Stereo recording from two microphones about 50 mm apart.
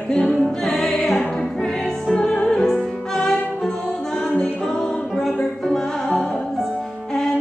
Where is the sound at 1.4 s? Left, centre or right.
Centre.